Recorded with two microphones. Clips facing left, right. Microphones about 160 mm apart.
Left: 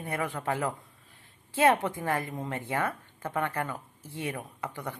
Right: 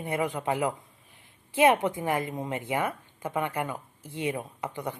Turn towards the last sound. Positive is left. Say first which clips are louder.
# right 3 dB
turn(degrees=-20)  # may be behind; listen again after turning